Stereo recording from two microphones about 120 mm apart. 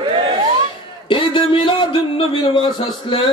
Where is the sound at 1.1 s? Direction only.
45° left (ahead or behind).